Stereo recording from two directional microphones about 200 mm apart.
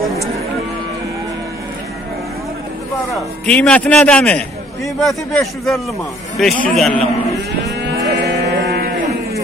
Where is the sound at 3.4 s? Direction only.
5° left (ahead or behind).